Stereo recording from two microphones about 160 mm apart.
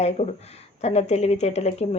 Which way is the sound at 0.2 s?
45° left (ahead or behind).